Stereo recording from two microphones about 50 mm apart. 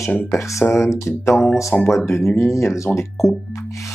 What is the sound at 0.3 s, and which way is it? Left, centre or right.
Speech, left.